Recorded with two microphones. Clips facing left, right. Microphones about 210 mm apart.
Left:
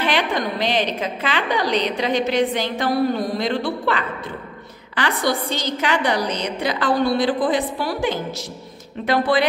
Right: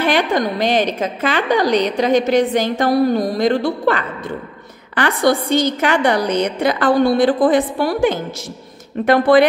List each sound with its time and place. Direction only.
0.0 s a woman's voice: 45° right (ahead or behind)